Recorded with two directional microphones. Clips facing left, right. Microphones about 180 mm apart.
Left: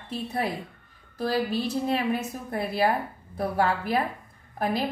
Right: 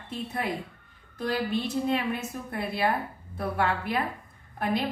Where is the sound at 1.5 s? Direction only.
35° left (ahead or behind).